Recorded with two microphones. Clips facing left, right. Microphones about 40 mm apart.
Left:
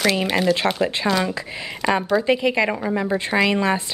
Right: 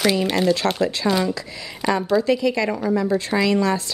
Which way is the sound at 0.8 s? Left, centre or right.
Left.